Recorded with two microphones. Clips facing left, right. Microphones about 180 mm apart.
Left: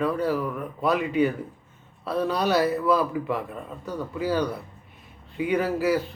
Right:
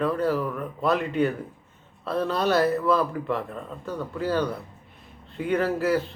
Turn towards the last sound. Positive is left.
turn(degrees=0)  # may be behind; listen again after turning